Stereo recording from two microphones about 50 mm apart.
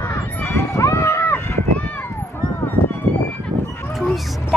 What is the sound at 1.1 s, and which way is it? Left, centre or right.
Run, left.